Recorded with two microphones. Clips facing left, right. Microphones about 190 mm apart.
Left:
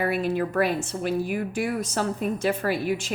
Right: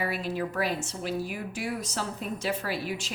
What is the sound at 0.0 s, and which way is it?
A woman's voice, 55° left (ahead or behind).